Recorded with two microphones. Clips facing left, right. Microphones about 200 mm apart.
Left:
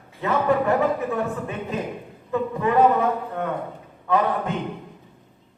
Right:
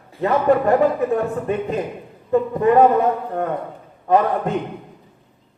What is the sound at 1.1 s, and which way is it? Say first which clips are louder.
A man's voice: right 6 dB; 40° right (ahead or behind).